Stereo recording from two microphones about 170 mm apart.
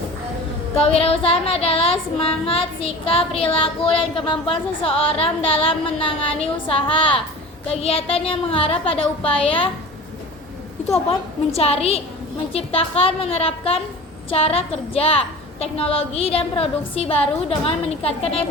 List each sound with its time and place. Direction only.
0.8 s child singing: 35° left (ahead or behind)
11.5 s child singing: 35° left (ahead or behind)